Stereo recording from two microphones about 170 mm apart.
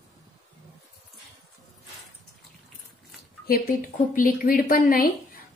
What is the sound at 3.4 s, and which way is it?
Speech, 60° left (ahead or behind).